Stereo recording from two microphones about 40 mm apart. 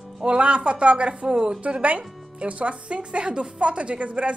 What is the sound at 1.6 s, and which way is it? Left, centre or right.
Speech, right.